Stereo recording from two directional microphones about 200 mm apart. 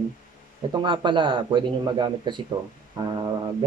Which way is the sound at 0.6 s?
25° right (ahead or behind).